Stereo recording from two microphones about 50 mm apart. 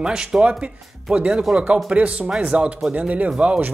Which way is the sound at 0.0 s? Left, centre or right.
Centre.